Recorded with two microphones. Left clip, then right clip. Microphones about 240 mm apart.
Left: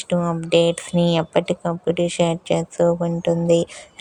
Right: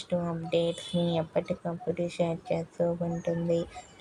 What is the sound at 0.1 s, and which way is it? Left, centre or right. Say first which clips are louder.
Speech: left 10 dB; left.